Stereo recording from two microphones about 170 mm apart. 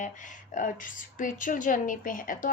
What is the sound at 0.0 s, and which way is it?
A woman's voice, 50° left (ahead or behind).